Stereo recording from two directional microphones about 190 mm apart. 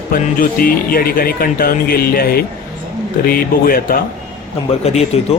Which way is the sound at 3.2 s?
50° left (ahead or behind).